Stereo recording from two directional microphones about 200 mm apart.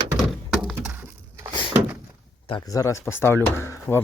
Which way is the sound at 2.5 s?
20° left (ahead or behind).